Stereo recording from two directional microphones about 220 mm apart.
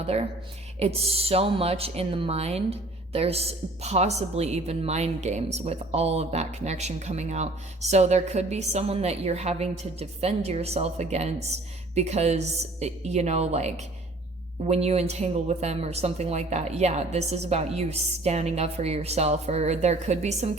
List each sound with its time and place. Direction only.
0.0 s a woman's voice: 30° right (ahead or behind)